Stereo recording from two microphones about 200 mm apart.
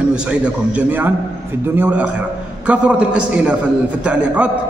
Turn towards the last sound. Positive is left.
turn(degrees=-5)  # may be behind; listen again after turning